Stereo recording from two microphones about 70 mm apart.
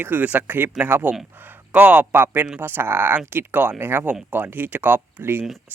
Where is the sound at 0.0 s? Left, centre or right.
Right.